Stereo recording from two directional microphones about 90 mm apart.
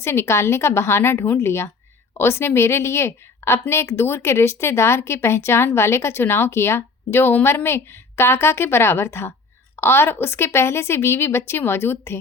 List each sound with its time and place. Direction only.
0.0 s a woman's voice: 30° left (ahead or behind)